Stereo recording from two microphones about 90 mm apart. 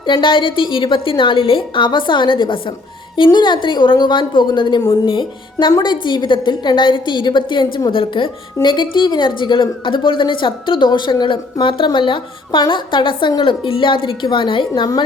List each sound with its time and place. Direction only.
0.0 s a woman's voice: 60° left (ahead or behind)
8.6 s a woman's voice: 60° left (ahead or behind)